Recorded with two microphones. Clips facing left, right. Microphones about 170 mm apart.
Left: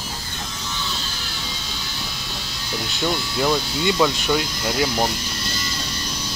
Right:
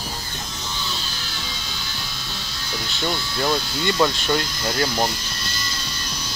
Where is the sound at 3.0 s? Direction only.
5° left (ahead or behind).